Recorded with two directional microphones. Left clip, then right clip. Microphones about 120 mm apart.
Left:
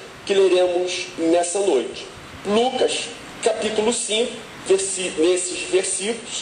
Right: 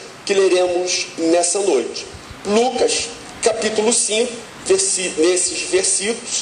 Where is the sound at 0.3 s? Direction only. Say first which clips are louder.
Right 1 dB; 40° right (ahead or behind).